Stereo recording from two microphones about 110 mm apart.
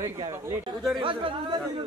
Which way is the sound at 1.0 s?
50° right (ahead or behind).